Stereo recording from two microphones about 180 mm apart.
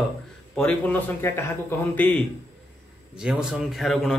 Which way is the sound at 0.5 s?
10° left (ahead or behind).